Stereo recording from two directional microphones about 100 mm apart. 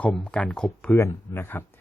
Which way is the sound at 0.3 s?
10° left (ahead or behind).